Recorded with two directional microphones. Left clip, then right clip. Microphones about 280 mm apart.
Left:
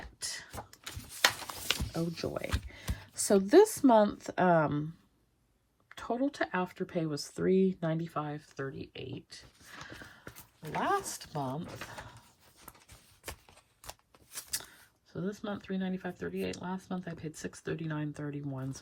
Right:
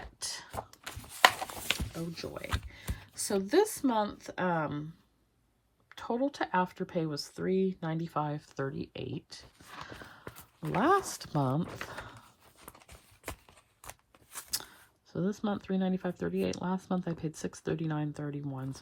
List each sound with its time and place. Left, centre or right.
0.2 s a sound: centre
1.4 s music: centre
2.0 s speech: centre
5.9 s speech: centre; by 11.4 s right
14.3 s speech: centre